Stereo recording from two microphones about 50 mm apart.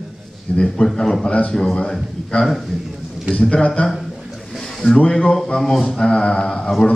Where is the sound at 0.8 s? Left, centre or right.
Centre.